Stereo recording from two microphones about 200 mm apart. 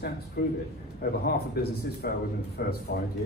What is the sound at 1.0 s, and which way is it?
Speech, 50° left (ahead or behind).